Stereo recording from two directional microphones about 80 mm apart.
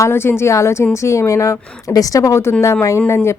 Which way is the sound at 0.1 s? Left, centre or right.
Left.